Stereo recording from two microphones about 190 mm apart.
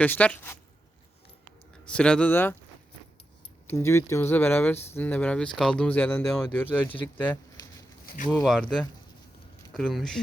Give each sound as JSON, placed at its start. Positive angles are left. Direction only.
{"t": 0.0, "sound": "speech", "side_deg": 10}
{"t": 1.9, "sound": "speech", "side_deg": 5}
{"t": 3.7, "sound": "speech", "side_deg": 15}
{"t": 8.0, "sound": "a sound", "side_deg": 45}
{"t": 8.3, "sound": "speech", "side_deg": 0}
{"t": 9.7, "sound": "speech", "side_deg": 0}